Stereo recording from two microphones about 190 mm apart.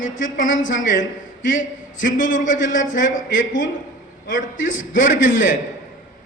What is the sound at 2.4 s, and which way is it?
Speech, 45° left (ahead or behind).